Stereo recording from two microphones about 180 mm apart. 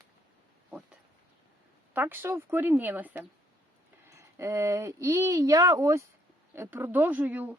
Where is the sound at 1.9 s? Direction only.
10° right (ahead or behind).